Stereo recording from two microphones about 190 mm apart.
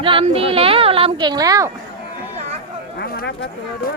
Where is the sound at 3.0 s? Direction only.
65° left (ahead or behind).